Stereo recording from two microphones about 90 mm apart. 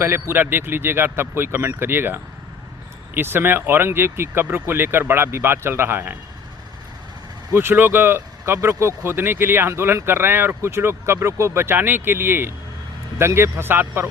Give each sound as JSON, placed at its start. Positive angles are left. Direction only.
{"t": 0.0, "sound": "speech", "side_deg": -25}
{"t": 7.5, "sound": "speech", "side_deg": -25}